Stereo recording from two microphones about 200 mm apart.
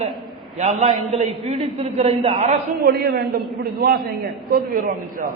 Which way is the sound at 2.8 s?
50° right (ahead or behind).